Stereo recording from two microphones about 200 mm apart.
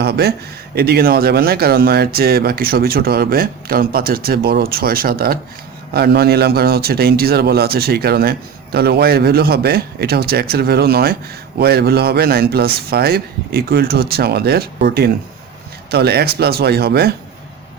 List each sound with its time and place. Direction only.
0.0 s speech: 55° right (ahead or behind)